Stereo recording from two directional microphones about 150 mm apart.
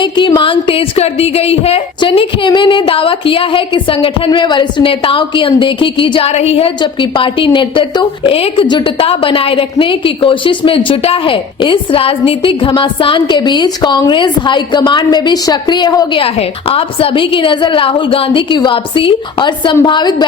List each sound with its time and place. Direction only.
0.0 s a woman's voice: 30° left (ahead or behind)
16.2 s a woman's voice: 40° left (ahead or behind)